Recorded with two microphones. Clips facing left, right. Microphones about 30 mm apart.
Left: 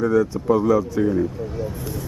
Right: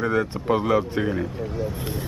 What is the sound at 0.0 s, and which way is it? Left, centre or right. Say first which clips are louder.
Speech: left 4 dB; right.